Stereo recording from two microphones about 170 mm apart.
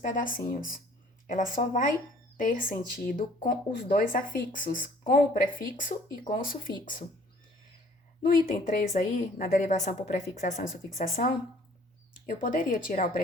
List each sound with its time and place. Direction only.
0.0 s speech: 55° left (ahead or behind)
8.2 s speech: 55° left (ahead or behind)